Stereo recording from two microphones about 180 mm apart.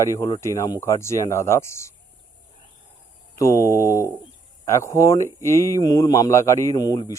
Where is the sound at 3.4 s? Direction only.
15° left (ahead or behind).